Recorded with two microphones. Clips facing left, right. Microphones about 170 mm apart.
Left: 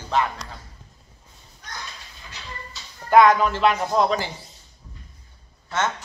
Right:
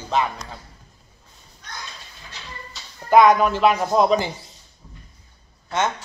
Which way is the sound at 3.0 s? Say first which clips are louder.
Right 1 dB; 15° right (ahead or behind).